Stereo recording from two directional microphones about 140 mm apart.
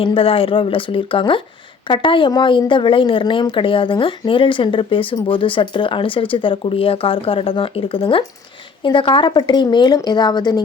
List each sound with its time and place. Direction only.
0.0 s a woman's voice: 40° left (ahead or behind)